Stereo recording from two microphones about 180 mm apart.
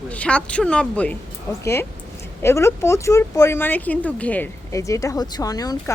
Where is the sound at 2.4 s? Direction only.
15° left (ahead or behind).